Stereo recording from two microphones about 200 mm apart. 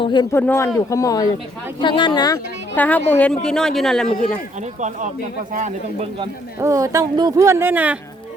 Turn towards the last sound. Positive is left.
turn(degrees=-10)  # may be behind; listen again after turning